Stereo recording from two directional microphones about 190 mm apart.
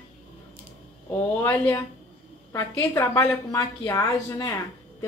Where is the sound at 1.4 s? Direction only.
10° left (ahead or behind).